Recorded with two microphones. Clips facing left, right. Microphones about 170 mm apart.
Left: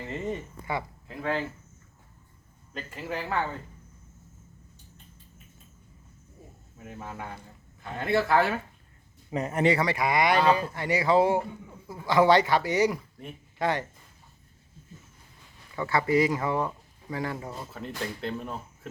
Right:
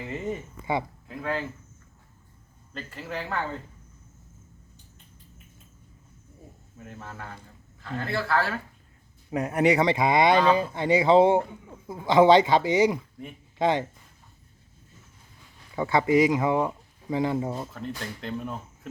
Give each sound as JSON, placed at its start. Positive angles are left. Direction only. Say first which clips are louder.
{"t": 0.0, "sound": "speech", "louder": "right 1 dB", "side_deg": 0}
{"t": 2.7, "sound": "speech", "louder": "left 1 dB", "side_deg": 10}
{"t": 6.8, "sound": "speech", "louder": "left 2 dB", "side_deg": 15}
{"t": 9.3, "sound": "speech", "louder": "right 2 dB", "side_deg": -10}
{"t": 15.7, "sound": "speech", "louder": "right 3 dB", "side_deg": -15}
{"t": 17.7, "sound": "speech", "louder": "even", "side_deg": 0}